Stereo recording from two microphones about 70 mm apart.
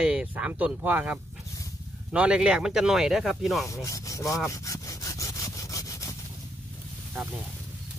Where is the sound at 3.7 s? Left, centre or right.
Left.